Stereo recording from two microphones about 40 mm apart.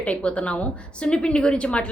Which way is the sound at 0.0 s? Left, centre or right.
Left.